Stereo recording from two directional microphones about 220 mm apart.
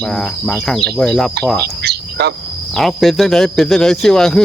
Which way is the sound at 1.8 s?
50° right (ahead or behind).